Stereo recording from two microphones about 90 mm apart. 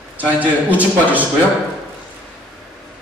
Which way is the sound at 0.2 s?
15° right (ahead or behind).